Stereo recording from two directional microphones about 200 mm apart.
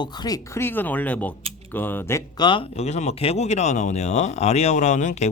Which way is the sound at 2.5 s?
30° left (ahead or behind).